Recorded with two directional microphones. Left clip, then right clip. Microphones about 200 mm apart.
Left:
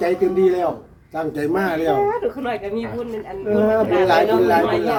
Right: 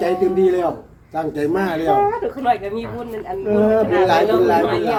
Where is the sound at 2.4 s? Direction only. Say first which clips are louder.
Right 5 dB; 25° right (ahead or behind).